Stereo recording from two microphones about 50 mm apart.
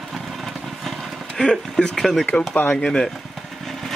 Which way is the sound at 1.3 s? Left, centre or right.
Centre.